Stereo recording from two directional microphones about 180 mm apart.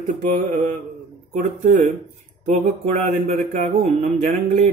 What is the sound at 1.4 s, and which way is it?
Speech, 45° right (ahead or behind).